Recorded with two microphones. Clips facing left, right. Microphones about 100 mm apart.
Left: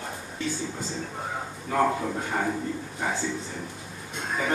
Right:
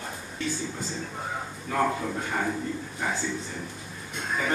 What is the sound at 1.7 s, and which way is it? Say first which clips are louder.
Speech: left 2 dB; 20° left (ahead or behind).